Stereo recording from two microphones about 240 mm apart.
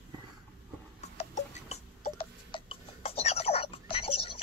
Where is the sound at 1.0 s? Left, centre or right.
Left.